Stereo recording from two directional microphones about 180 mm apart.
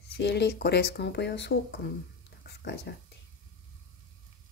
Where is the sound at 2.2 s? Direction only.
75° left (ahead or behind).